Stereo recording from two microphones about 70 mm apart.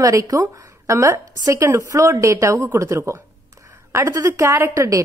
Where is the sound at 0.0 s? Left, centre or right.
Right.